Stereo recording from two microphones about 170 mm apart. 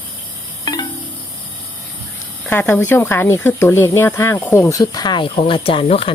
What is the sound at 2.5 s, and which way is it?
Speech, 10° left (ahead or behind).